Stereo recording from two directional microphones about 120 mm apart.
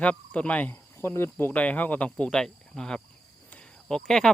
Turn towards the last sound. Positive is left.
turn(degrees=5)  # may be behind; listen again after turning